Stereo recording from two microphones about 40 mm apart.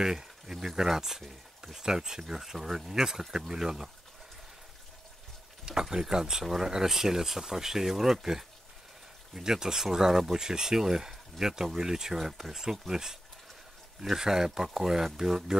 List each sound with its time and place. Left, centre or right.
0.0 s speech: centre
5.7 s speech: centre